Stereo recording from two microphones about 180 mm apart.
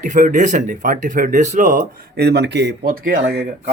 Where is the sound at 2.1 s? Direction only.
65° right (ahead or behind).